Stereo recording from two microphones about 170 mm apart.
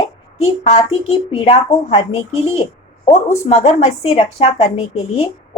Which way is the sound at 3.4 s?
40° left (ahead or behind).